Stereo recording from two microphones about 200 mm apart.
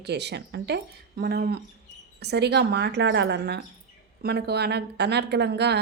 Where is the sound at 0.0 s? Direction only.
55° right (ahead or behind).